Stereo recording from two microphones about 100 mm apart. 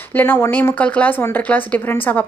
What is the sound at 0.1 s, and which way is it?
A woman's voice, 20° left (ahead or behind).